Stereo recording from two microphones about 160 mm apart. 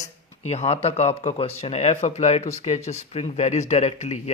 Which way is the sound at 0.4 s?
40° left (ahead or behind).